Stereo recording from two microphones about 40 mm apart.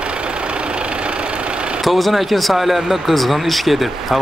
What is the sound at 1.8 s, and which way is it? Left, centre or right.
Speech, centre.